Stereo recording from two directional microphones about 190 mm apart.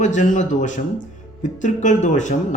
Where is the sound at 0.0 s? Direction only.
40° left (ahead or behind).